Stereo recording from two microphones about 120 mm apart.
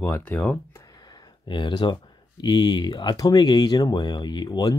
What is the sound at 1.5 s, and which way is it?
Speech, 40° left (ahead or behind).